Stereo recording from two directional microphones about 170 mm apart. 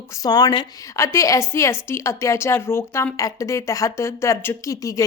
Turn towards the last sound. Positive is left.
turn(degrees=20)  # may be behind; listen again after turning